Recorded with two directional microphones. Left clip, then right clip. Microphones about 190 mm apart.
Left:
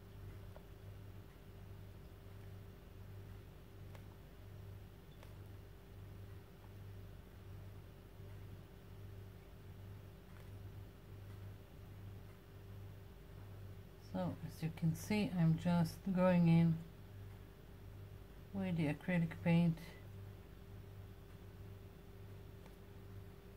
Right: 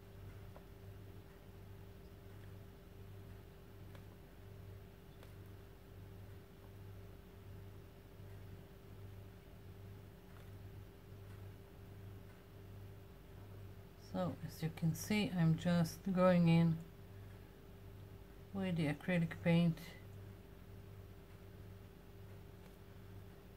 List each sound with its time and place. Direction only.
14.1 s speech: 20° right (ahead or behind)
18.6 s speech: 20° right (ahead or behind)